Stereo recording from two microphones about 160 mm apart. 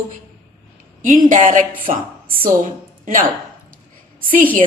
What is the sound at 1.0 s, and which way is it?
Speech, 55° right (ahead or behind).